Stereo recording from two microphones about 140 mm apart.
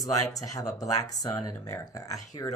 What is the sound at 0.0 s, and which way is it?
Speech, 25° left (ahead or behind).